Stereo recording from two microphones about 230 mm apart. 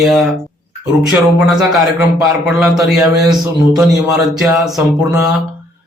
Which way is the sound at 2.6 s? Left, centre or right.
Centre.